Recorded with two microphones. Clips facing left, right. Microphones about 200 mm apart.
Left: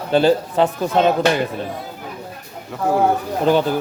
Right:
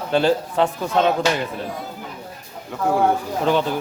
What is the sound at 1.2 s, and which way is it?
Speech, 60° left (ahead or behind).